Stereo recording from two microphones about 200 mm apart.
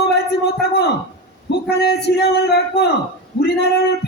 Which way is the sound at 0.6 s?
55° left (ahead or behind).